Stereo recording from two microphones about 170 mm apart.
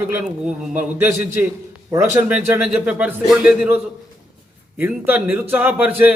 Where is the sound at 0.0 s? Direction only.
5° right (ahead or behind).